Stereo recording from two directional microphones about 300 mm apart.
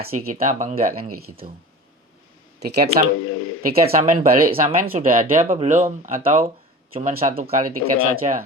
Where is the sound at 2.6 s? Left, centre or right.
Right.